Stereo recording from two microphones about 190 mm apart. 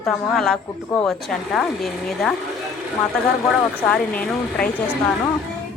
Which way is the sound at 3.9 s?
5° left (ahead or behind).